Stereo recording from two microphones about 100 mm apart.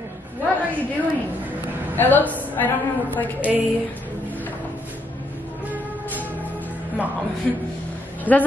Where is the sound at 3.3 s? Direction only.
15° right (ahead or behind).